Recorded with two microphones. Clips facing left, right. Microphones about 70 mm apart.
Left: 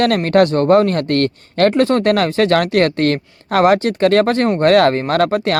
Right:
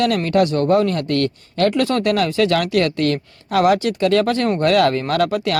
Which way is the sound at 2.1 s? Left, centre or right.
Left.